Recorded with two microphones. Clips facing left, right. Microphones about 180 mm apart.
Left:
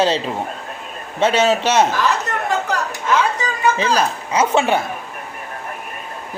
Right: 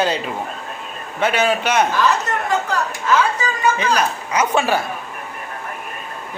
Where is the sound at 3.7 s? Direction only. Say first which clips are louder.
Left 1 dB; 30° left (ahead or behind).